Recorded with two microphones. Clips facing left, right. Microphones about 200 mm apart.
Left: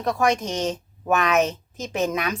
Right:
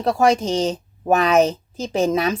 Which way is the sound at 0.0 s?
30° right (ahead or behind).